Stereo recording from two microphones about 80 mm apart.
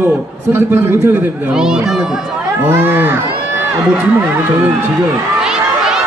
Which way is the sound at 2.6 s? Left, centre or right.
Right.